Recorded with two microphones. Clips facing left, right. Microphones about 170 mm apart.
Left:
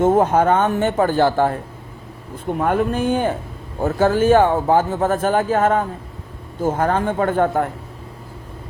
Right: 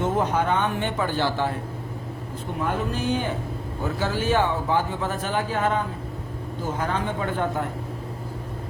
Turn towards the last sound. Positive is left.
turn(degrees=50)  # may be behind; listen again after turning